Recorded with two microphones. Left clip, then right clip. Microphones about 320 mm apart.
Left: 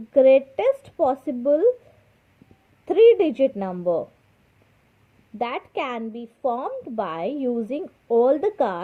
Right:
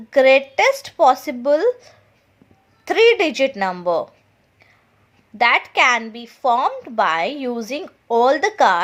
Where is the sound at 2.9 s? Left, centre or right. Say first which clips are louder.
Right 1 dB; centre.